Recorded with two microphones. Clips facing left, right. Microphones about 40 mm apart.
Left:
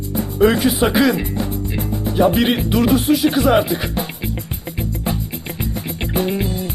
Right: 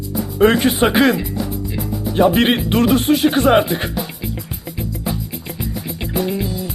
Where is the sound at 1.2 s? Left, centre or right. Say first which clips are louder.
Left 1 dB; left.